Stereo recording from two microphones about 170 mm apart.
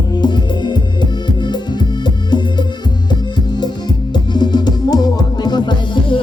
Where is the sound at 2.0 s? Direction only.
25° left (ahead or behind).